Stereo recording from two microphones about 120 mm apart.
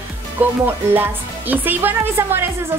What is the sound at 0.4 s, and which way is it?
A woman's voice, 15° right (ahead or behind).